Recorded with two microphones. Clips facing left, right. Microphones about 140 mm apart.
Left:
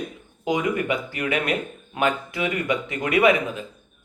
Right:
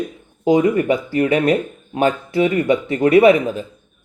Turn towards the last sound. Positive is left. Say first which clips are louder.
# right 8 dB
turn(degrees=-35)  # may be behind; listen again after turning